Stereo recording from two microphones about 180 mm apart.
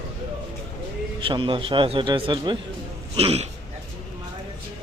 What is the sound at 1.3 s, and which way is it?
Speech, 30° right (ahead or behind).